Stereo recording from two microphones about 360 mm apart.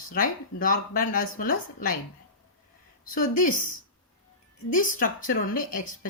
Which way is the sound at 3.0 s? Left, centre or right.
Left.